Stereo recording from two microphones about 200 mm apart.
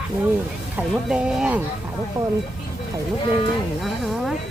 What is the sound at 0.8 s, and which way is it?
Speech, 5° right (ahead or behind).